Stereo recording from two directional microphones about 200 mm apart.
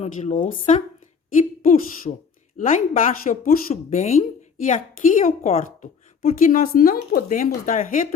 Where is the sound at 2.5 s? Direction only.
40° left (ahead or behind).